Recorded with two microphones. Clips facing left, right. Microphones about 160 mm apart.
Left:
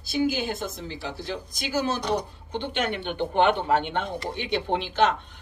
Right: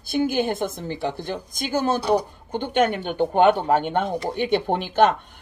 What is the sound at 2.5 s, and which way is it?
Speech, 50° right (ahead or behind).